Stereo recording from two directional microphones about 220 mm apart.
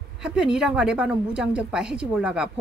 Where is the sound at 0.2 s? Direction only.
5° right (ahead or behind).